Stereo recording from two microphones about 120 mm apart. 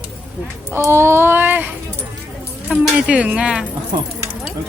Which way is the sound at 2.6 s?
10° right (ahead or behind).